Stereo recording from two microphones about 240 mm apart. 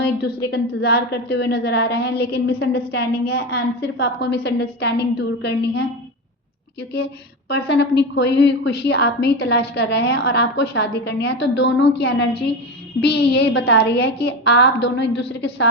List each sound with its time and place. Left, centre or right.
0.0 s a woman's voice: left
6.9 s a woman's voice: left